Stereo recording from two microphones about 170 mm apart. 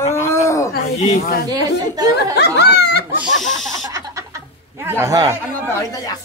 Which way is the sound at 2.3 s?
80° left.